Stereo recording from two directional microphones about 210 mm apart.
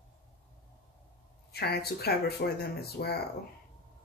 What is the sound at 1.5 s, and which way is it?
Speech, 50° left (ahead or behind).